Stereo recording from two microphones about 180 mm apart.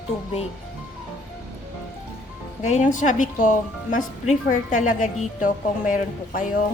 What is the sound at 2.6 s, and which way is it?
Speech, 40° left (ahead or behind).